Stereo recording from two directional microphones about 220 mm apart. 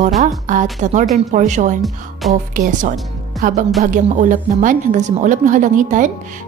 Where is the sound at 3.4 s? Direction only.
35° right (ahead or behind).